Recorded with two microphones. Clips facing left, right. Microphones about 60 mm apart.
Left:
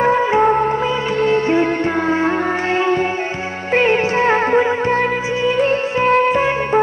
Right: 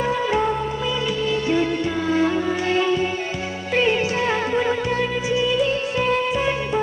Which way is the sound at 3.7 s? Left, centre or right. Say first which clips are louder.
Left 5 dB; left.